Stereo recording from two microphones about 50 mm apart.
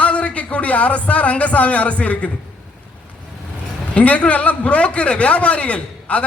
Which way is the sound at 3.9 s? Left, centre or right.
Left.